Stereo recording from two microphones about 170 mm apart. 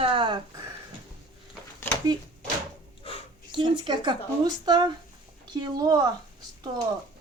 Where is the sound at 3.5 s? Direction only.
30° right (ahead or behind).